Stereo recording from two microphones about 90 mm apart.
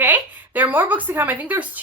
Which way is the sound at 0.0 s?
20° right (ahead or behind).